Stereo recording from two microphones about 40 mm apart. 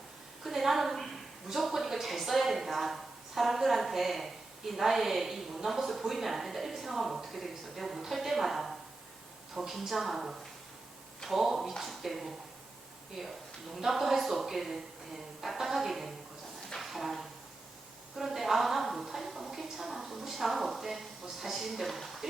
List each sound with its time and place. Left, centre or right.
0.4 s a woman's voice: centre
13.2 s a woman's voice: centre
16.8 s a sound: centre
18.2 s a woman's voice: centre